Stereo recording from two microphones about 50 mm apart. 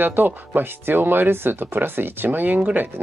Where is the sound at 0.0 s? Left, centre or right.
Right.